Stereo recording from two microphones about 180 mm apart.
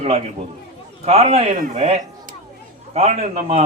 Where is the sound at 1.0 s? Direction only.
35° right (ahead or behind).